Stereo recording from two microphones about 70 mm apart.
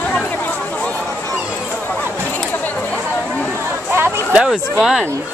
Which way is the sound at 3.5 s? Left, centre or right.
Right.